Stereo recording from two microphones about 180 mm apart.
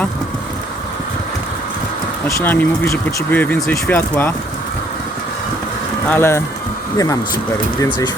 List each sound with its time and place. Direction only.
2.2 s speech: 10° left (ahead or behind)
6.1 s speech: 15° left (ahead or behind)